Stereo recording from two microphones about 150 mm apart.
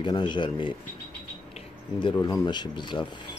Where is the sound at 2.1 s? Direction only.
25° left (ahead or behind).